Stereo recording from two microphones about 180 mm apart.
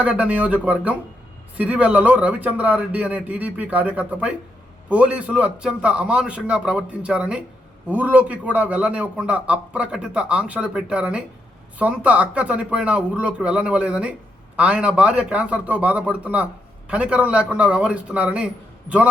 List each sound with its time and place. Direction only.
0.0 s a man's voice: 5° right (ahead or behind)